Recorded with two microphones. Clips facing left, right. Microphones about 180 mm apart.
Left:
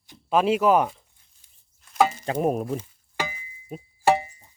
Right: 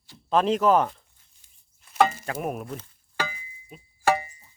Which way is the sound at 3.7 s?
45° left (ahead or behind).